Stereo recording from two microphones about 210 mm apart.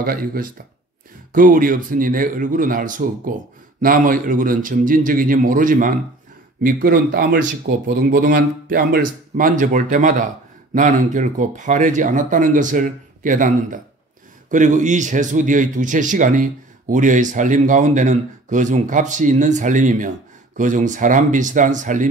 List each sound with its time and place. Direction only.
0.0 s speech: 45° right (ahead or behind)